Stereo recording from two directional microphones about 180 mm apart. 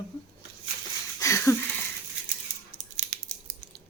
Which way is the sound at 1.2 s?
15° left (ahead or behind).